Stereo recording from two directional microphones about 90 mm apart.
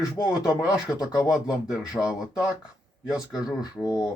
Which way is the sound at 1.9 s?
10° right (ahead or behind).